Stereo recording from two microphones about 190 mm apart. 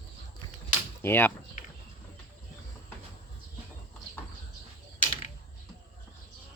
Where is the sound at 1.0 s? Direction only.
10° left (ahead or behind).